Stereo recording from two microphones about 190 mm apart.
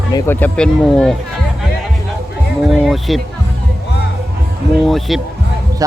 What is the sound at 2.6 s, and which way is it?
Speech, centre (ahead or behind).